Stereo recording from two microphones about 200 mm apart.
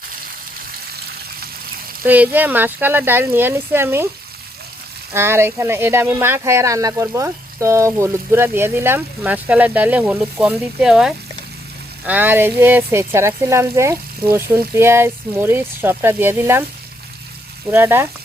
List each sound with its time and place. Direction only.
0.9 s frying: 50° right (ahead or behind)
2.0 s speech: 10° right (ahead or behind)
5.1 s speech: 10° right (ahead or behind)
17.7 s speech: 10° right (ahead or behind)